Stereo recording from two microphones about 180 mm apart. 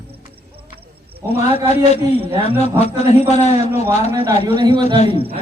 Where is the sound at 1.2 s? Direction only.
15° right (ahead or behind).